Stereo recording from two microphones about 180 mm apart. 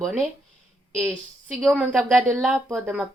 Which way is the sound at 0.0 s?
Centre (ahead or behind).